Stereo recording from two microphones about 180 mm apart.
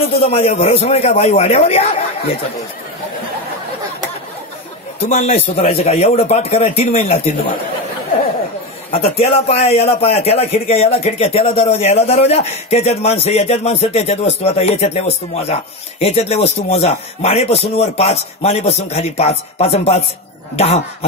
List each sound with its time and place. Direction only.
0.2 s a man's voice: 35° left (ahead or behind)
5.1 s a man's voice: 35° left (ahead or behind)
8.9 s a man's voice: 35° left (ahead or behind)